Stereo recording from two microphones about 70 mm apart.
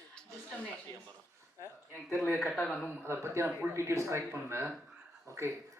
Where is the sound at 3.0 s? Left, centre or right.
Right.